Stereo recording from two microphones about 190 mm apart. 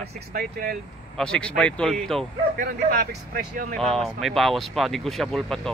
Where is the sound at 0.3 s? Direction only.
50° right (ahead or behind).